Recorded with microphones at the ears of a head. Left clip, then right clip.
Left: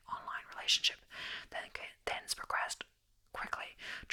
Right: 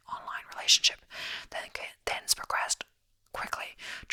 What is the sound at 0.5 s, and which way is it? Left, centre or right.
Speech, right.